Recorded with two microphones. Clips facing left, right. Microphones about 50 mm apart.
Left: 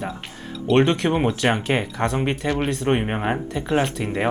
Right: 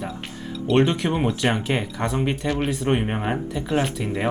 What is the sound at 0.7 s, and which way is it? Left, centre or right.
Speech, centre.